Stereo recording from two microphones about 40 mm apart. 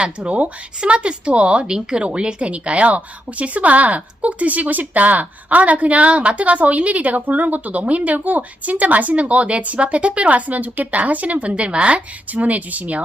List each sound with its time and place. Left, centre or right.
0.0 s speech: right